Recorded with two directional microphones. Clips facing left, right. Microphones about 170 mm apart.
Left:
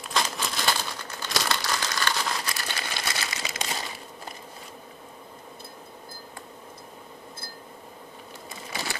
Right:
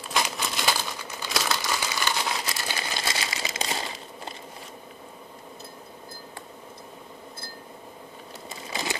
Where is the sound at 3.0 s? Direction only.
25° right (ahead or behind).